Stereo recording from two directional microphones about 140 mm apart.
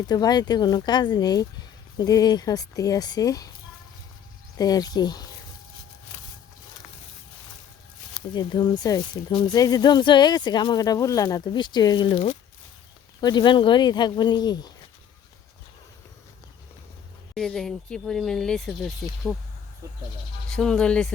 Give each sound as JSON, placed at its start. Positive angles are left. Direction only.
{"t": 0.1, "sound": "speech", "side_deg": 30}
{"t": 4.5, "sound": "speech", "side_deg": 25}
{"t": 8.3, "sound": "speech", "side_deg": 35}
{"t": 17.3, "sound": "speech", "side_deg": 0}
{"t": 19.8, "sound": "speech", "side_deg": -20}
{"t": 20.6, "sound": "speech", "side_deg": 5}